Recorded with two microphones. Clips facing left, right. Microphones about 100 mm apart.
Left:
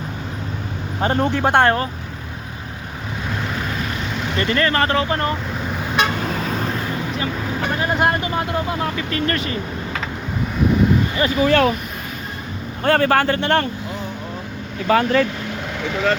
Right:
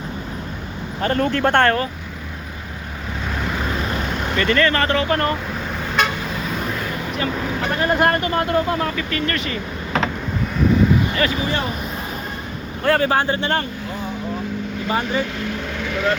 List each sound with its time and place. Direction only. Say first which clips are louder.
1.0 s speech: even; 20° left (ahead or behind)
4.4 s speech: right 1 dB; 30° left (ahead or behind)
5.0 s speech: right 2 dB; 15° left (ahead or behind)
7.2 s speech: right 1 dB; 10° left (ahead or behind)
9.0 s speech: left 1 dB; 30° left (ahead or behind)
11.4 s speech: left 8 dB; 65° left (ahead or behind)
12.8 s speech: left 2 dB; 55° left (ahead or behind)
14.8 s speech: left 6 dB; 90° left